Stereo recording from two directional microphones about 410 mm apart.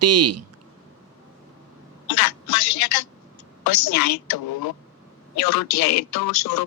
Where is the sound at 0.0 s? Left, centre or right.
Right.